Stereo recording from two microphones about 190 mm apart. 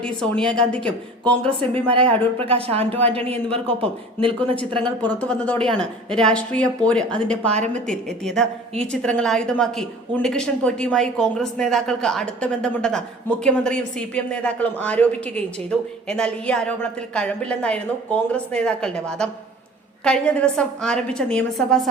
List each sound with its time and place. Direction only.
0.0 s a woman's voice: 5° left (ahead or behind)
1.9 s a man's voice: 30° right (ahead or behind)
4.8 s a woman's voice: 5° left (ahead or behind)
7.5 s speech: 40° right (ahead or behind)
7.9 s a woman's voice: 5° left (ahead or behind)